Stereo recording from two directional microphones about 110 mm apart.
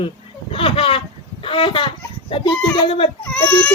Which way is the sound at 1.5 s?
50° left (ahead or behind).